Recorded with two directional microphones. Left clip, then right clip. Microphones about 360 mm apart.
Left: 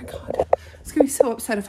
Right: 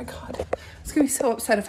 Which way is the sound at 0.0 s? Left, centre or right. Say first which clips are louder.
Left 8 dB; centre.